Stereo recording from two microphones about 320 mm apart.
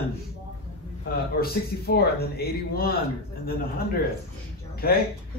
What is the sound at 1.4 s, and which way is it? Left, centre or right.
Speech, left.